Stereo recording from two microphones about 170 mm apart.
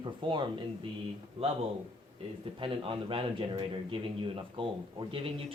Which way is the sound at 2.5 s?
30° right (ahead or behind).